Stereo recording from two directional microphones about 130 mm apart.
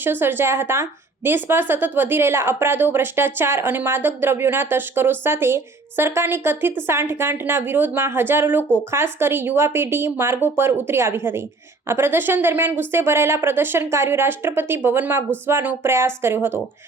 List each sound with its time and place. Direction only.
0.0 s a woman's voice: 15° right (ahead or behind)